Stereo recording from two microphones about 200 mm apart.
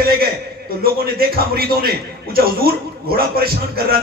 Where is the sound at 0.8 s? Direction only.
50° right (ahead or behind).